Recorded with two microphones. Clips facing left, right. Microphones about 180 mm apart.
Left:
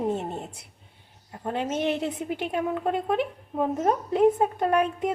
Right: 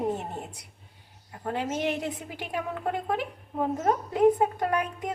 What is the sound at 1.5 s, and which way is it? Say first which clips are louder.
Speech: left 2 dB; 25° left (ahead or behind).